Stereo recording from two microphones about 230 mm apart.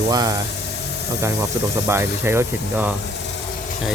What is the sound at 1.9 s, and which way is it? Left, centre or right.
Speech, centre.